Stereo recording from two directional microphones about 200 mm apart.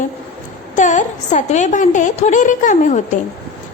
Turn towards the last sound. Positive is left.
turn(degrees=40)  # may be behind; listen again after turning